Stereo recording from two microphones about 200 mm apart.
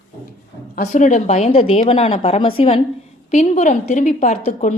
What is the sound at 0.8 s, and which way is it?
A woman's voice, 40° left (ahead or behind).